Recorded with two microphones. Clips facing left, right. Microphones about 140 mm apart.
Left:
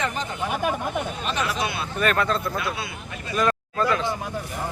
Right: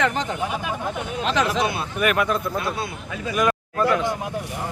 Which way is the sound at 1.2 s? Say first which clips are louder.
Right 10 dB; 90° right.